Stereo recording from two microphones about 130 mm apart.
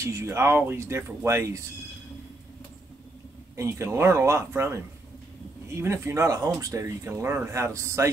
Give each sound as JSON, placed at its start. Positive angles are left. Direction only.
{"t": 0.0, "sound": "speech", "side_deg": -20}
{"t": 3.5, "sound": "speech", "side_deg": -20}
{"t": 5.8, "sound": "speech", "side_deg": -20}